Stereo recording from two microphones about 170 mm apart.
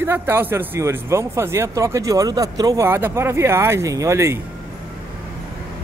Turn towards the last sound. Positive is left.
turn(degrees=-15)  # may be behind; listen again after turning